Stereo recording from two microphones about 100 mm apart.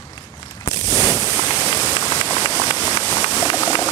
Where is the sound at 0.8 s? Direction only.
40° left (ahead or behind).